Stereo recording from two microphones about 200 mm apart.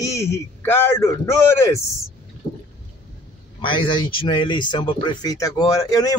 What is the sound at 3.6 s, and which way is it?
Speech, 25° left (ahead or behind).